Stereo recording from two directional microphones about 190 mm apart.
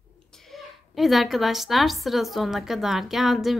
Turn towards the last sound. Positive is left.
turn(degrees=0)  # may be behind; listen again after turning